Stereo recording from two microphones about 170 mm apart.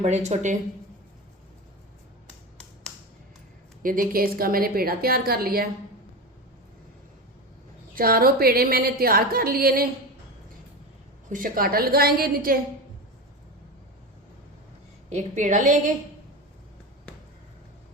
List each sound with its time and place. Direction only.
0.0 s speech: 40° right (ahead or behind)
3.8 s a woman's voice: 55° right (ahead or behind)
7.9 s a woman's voice: 60° right (ahead or behind)
11.3 s a woman's voice: 55° right (ahead or behind)
15.1 s a woman's voice: 45° right (ahead or behind)